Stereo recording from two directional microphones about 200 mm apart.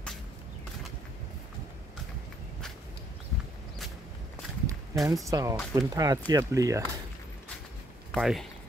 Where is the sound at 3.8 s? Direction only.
Centre (ahead or behind).